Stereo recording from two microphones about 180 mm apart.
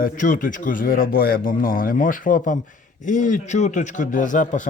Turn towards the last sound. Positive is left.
turn(degrees=45)  # may be behind; listen again after turning